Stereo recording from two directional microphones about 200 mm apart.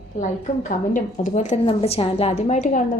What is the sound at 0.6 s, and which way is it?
A woman's voice, 40° left (ahead or behind).